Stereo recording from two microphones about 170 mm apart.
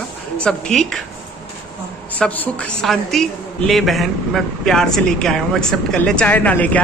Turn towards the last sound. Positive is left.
turn(degrees=10)  # may be behind; listen again after turning